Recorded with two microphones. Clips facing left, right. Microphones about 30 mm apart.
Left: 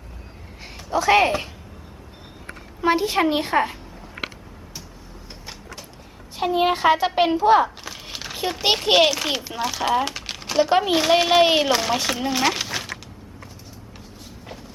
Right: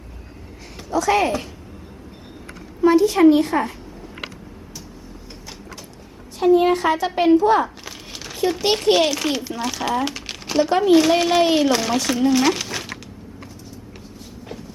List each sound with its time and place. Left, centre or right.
0.9 s a woman's voice: left
2.8 s a woman's voice: left
6.4 s a woman's voice: left; by 10.1 s centre
10.1 s typing: centre
10.6 s speech: centre